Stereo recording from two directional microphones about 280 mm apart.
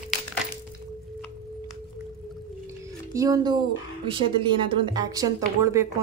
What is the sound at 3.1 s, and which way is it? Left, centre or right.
A woman's voice, centre.